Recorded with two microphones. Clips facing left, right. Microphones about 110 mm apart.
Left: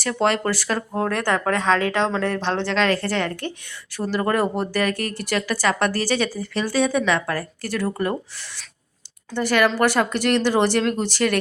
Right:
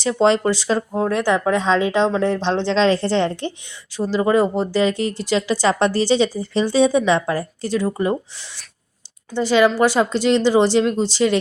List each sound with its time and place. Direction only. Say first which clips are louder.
0.0 s speech: right 5 dB; 20° right (ahead or behind)
9.3 s speech: right 4 dB; 15° right (ahead or behind)